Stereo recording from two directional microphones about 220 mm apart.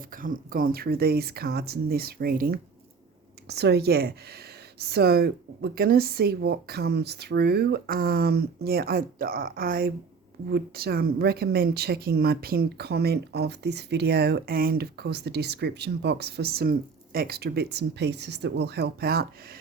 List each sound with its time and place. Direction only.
0.2 s speech: 40° right (ahead or behind)